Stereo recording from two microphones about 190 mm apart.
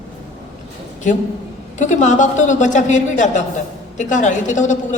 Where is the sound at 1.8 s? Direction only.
40° left (ahead or behind).